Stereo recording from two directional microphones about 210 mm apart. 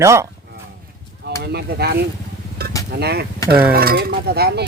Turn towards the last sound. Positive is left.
turn(degrees=-50)  # may be behind; listen again after turning